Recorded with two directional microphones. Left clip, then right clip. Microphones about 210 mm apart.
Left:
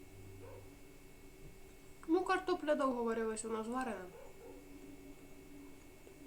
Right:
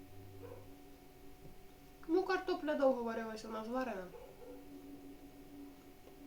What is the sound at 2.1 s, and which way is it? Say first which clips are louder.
Speech: left 1 dB; 40° left (ahead or behind).